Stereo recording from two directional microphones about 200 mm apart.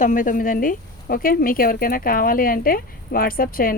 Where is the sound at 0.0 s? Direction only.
40° left (ahead or behind).